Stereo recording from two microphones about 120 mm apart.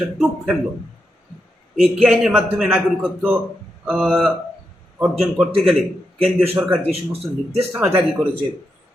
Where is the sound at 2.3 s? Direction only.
15° right (ahead or behind).